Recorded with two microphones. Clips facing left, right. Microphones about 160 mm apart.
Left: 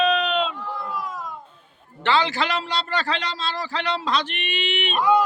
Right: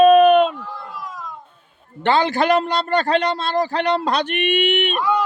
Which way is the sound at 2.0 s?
50° right (ahead or behind).